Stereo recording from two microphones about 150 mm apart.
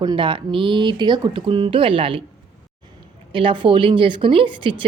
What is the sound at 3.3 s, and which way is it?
Speech, 35° right (ahead or behind).